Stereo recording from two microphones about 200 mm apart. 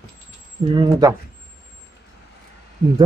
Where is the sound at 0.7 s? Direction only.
20° right (ahead or behind).